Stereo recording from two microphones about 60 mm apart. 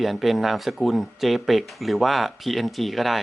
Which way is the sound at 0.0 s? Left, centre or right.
Centre.